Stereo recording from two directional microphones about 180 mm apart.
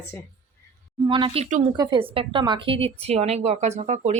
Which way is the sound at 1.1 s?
25° right (ahead or behind).